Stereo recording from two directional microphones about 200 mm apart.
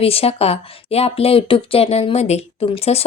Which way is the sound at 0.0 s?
30° left (ahead or behind).